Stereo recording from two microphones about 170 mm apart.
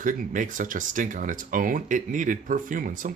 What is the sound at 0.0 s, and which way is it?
Speech, 50° right (ahead or behind).